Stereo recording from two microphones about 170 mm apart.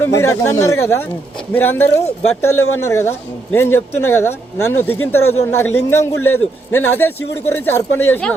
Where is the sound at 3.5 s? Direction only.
15° left (ahead or behind).